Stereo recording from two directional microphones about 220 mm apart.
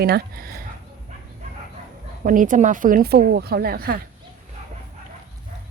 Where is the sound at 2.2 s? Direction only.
35° right (ahead or behind).